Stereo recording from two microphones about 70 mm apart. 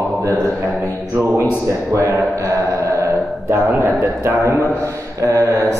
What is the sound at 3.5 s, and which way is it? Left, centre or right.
A man's voice, right.